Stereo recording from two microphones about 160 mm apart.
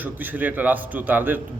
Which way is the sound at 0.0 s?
10° right (ahead or behind).